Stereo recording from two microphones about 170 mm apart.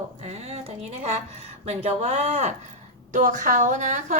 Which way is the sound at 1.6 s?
40° right (ahead or behind).